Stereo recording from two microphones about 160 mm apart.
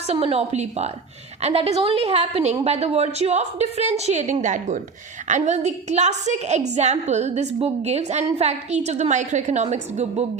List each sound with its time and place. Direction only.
0.1 s a woman's voice: 40° right (ahead or behind)